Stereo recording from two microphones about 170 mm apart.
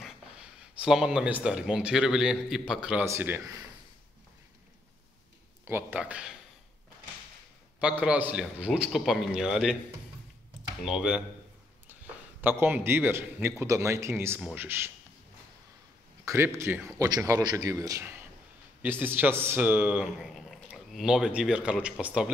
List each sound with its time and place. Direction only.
0.0 s speech: 5° right (ahead or behind)
5.7 s speech: 10° right (ahead or behind)
7.8 s a man's voice: 5° right (ahead or behind)
10.8 s a man's voice: 5° right (ahead or behind)
16.3 s a man's voice: 15° right (ahead or behind)